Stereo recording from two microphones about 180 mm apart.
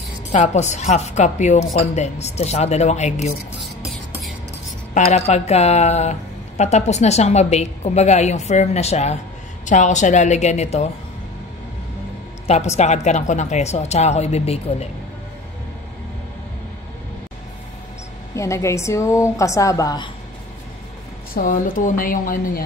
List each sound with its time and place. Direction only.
0.3 s a woman's voice: 40° left (ahead or behind)
4.9 s a woman's voice: 35° left (ahead or behind)
12.4 s a woman's voice: 35° left (ahead or behind)
18.3 s a woman's voice: 15° left (ahead or behind)
21.4 s a woman's voice: 45° left (ahead or behind)